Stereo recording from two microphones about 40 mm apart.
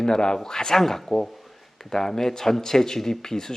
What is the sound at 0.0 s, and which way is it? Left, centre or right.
Speech, centre.